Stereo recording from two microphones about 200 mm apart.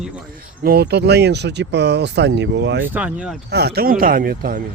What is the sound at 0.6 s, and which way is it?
Speech, 55° right (ahead or behind).